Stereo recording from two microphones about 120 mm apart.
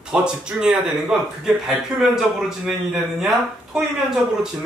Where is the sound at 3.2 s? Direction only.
5° right (ahead or behind).